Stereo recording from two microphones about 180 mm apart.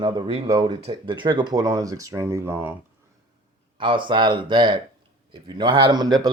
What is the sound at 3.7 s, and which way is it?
Speech, 25° right (ahead or behind).